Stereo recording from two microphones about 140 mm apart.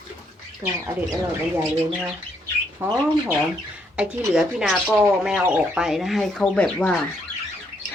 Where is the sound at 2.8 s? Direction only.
20° right (ahead or behind).